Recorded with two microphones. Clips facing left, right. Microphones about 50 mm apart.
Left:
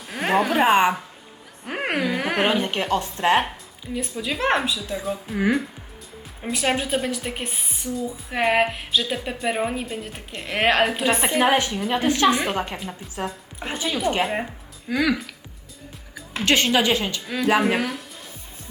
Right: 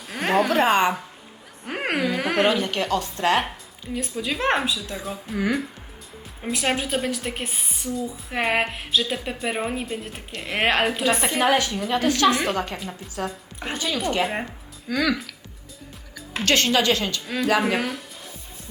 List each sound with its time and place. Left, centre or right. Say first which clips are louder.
0.0 s a woman's voice: even; centre
2.5 s speech: left 1 dB; centre
3.9 s a woman's voice: even; centre
6.4 s a woman's voice: left 1 dB; centre
11.9 s a woman's voice: even; left
12.7 s a woman's voice: even; centre
13.7 s speech: left 1 dB; centre
17.2 s a woman's voice: left 2 dB; centre